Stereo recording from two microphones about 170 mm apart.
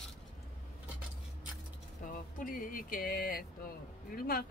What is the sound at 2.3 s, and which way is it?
Speech, 55° left (ahead or behind).